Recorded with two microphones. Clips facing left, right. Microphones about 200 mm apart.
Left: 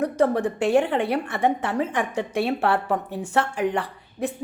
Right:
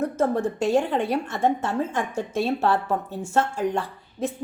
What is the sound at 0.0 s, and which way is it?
A woman's voice, 15° left (ahead or behind).